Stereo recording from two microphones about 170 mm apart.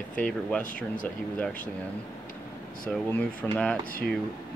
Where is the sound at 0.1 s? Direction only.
5° left (ahead or behind).